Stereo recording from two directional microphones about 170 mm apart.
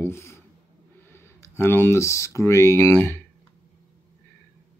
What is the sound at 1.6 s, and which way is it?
Speech, 15° left (ahead or behind).